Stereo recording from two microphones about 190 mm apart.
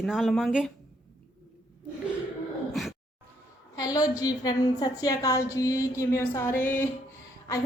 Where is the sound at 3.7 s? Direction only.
20° left (ahead or behind).